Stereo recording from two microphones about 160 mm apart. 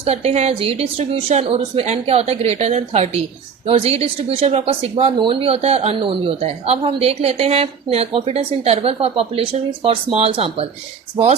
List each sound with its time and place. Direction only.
0.0 s speech: 40° right (ahead or behind)